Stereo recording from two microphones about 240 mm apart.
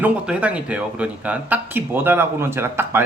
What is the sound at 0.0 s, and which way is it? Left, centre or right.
Speech, centre.